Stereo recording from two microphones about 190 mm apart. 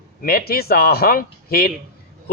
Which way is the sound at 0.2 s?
55° left (ahead or behind).